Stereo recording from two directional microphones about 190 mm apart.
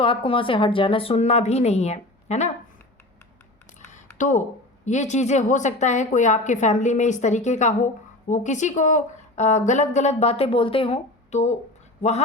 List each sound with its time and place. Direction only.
0.0 s a woman's voice: 25° left (ahead or behind)
4.2 s a woman's voice: 40° left (ahead or behind)